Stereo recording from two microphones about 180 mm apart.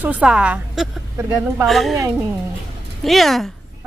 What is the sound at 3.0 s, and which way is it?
Speech, centre (ahead or behind).